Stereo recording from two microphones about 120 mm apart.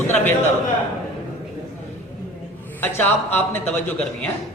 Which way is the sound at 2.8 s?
15° left (ahead or behind).